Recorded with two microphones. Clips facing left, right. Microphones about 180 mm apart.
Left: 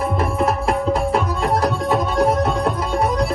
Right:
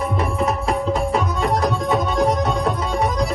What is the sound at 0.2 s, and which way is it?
Tabla, centre (ahead or behind).